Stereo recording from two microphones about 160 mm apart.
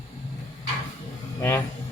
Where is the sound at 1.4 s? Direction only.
15° left (ahead or behind).